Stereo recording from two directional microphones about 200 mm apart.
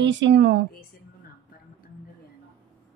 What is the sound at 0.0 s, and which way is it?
Speech, 65° right (ahead or behind).